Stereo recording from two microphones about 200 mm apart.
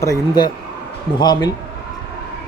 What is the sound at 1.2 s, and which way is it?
Speech, 20° left (ahead or behind).